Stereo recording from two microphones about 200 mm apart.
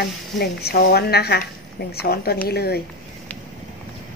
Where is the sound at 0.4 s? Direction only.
55° left (ahead or behind).